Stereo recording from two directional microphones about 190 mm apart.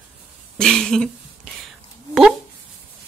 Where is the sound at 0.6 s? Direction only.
5° left (ahead or behind).